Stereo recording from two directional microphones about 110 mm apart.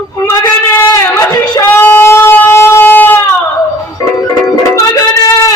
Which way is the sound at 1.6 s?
20° left (ahead or behind).